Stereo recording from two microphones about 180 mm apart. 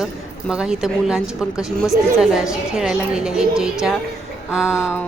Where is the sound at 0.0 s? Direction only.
5° right (ahead or behind).